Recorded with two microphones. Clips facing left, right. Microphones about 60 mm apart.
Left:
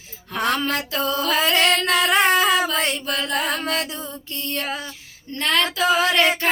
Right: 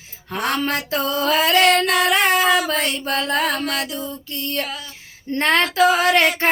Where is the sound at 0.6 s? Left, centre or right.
Right.